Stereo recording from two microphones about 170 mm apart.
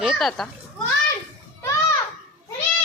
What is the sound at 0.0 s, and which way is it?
Children playing, centre (ahead or behind).